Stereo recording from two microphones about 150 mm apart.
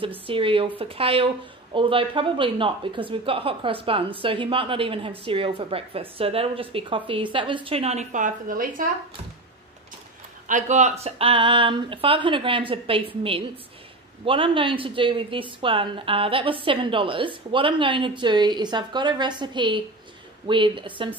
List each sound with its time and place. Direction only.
0.3 s a woman's voice: 35° right (ahead or behind); by 8.8 s 65° right (ahead or behind)
10.5 s speech: 50° right (ahead or behind)
14.2 s speech: 35° right (ahead or behind)